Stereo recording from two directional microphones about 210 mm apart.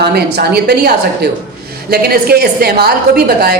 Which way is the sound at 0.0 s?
50° right (ahead or behind).